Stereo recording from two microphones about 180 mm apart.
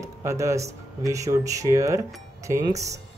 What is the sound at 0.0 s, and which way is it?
Speech, 15° right (ahead or behind).